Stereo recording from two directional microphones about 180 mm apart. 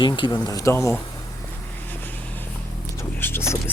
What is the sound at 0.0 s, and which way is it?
Speech, 25° left (ahead or behind).